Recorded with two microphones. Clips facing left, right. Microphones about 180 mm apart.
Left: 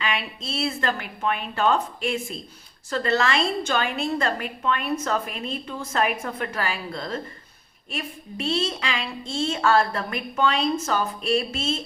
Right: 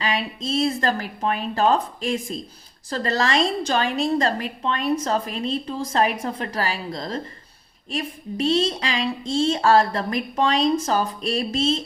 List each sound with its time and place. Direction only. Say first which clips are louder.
0.0 s a woman's voice: right 3 dB; 35° right (ahead or behind)